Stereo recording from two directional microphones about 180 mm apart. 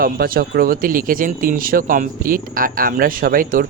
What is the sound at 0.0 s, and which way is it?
Speech, 55° right (ahead or behind).